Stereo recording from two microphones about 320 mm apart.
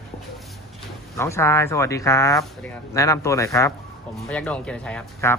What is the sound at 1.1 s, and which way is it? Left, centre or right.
Speech, centre.